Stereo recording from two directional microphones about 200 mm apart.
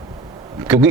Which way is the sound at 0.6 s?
10° right (ahead or behind).